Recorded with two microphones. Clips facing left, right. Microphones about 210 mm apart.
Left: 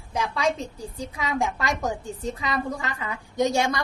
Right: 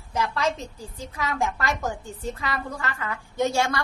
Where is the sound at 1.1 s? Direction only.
15° left (ahead or behind).